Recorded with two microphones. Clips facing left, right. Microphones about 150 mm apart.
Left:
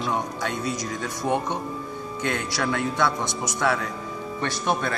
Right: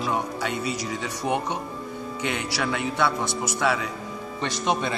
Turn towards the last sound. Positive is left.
turn(degrees=-15)  # may be behind; listen again after turning